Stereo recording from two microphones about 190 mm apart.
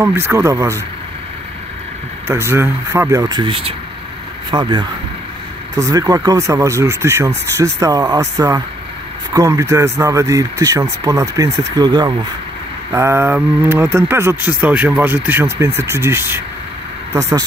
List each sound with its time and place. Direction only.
0.0 s speech: 15° right (ahead or behind)
2.2 s speech: 10° right (ahead or behind)